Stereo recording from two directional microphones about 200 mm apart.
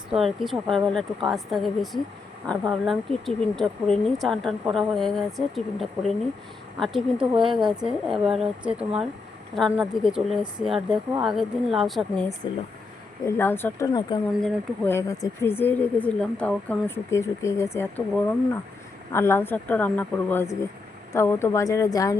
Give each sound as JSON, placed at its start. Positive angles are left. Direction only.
{"t": 0.1, "sound": "speech", "side_deg": 0}
{"t": 13.2, "sound": "speech", "side_deg": 10}